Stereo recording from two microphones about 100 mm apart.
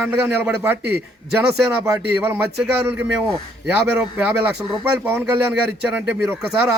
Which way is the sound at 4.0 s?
15° right (ahead or behind).